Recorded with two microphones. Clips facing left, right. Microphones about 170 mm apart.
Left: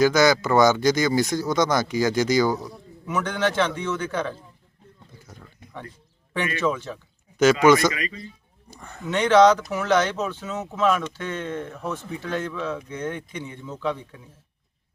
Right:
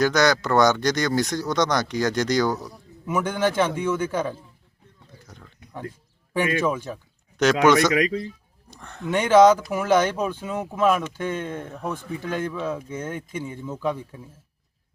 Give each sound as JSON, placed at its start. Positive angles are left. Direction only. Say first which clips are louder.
{"t": 0.0, "sound": "speech", "louder": "left 2 dB", "side_deg": 5}
{"t": 5.2, "sound": "a sound", "louder": "left 1 dB", "side_deg": 5}
{"t": 6.3, "sound": "speech", "louder": "right 2 dB", "side_deg": -10}
{"t": 7.6, "sound": "speech", "louder": "right 1 dB", "side_deg": 0}
{"t": 7.9, "sound": "a man's voice", "louder": "right 11 dB", "side_deg": -90}
{"t": 8.7, "sound": "speech", "louder": "right 1 dB", "side_deg": 0}
{"t": 9.0, "sound": "speech", "louder": "right 1 dB", "side_deg": -10}